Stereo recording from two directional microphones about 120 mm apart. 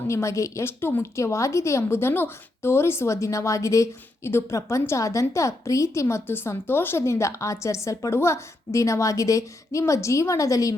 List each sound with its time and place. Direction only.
0.1 s a woman's voice: 25° left (ahead or behind)